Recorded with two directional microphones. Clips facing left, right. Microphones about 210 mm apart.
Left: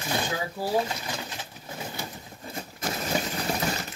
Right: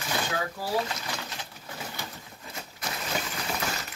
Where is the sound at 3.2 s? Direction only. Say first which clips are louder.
Left 4 dB; 30° left (ahead or behind).